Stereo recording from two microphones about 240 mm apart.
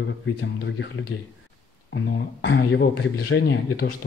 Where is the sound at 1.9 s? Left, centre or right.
Left.